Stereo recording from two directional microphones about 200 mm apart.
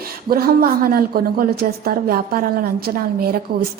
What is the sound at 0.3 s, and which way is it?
A woman's voice, 50° right (ahead or behind).